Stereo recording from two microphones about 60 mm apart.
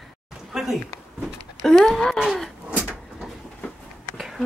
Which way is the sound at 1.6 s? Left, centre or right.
Centre.